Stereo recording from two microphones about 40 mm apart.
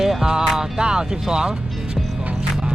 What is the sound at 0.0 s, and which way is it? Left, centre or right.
Music, centre.